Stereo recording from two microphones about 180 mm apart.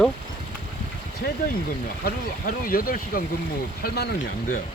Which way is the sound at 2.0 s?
55° left (ahead or behind).